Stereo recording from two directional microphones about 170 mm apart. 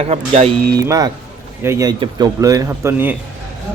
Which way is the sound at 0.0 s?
40° right (ahead or behind).